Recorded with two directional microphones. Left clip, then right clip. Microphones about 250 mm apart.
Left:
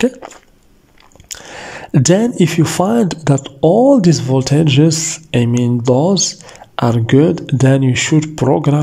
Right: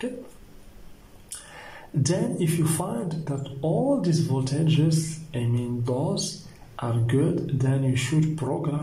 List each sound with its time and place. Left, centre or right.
1.3 s speech: left